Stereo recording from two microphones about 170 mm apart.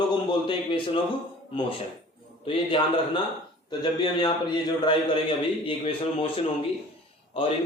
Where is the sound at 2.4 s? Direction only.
30° left (ahead or behind).